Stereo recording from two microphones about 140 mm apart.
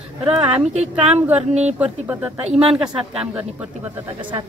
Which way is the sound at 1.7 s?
10° right (ahead or behind).